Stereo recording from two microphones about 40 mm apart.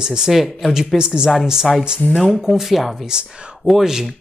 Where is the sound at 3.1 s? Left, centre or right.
Centre.